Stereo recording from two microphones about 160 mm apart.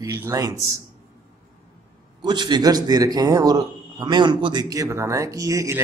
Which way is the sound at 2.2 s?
25° right (ahead or behind).